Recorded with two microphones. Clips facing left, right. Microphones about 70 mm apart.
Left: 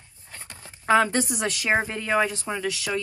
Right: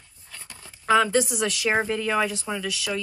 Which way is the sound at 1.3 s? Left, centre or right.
Left.